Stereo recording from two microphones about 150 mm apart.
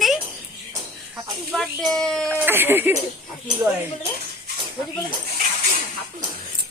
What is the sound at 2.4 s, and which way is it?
Speech, 15° right (ahead or behind).